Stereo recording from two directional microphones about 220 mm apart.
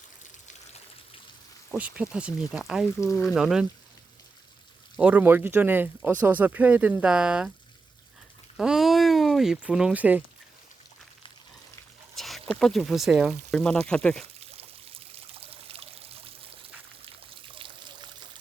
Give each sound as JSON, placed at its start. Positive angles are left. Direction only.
{"t": 1.7, "sound": "speech", "side_deg": -5}
{"t": 4.9, "sound": "speech", "side_deg": -5}
{"t": 8.5, "sound": "speech", "side_deg": 0}
{"t": 12.1, "sound": "speech", "side_deg": 0}
{"t": 14.3, "sound": "pour", "side_deg": -25}
{"t": 17.5, "sound": "trickle", "side_deg": -20}